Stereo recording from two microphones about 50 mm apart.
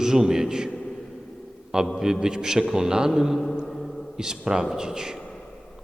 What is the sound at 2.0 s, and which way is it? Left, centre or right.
A man's voice, centre.